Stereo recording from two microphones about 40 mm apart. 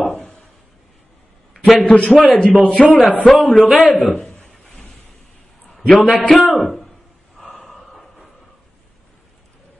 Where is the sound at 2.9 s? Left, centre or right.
Left.